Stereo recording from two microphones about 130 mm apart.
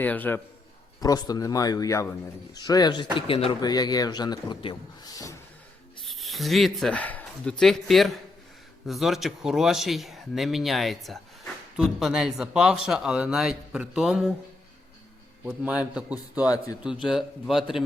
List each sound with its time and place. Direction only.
0.0 s a man's voice: 15° left (ahead or behind)
1.0 s speech: 30° left (ahead or behind)
3.2 s speech: 45° left (ahead or behind)
3.6 s speech: 30° left (ahead or behind)
6.1 s speech: centre (ahead or behind)
15.4 s a man's voice: 10° right (ahead or behind)